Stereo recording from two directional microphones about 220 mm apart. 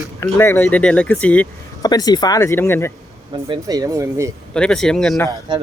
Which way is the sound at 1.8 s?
15° left (ahead or behind).